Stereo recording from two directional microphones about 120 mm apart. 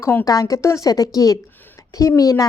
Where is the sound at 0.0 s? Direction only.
20° left (ahead or behind).